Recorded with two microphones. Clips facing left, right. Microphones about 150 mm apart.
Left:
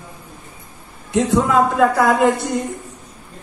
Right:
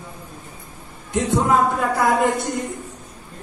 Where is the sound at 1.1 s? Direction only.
90° left.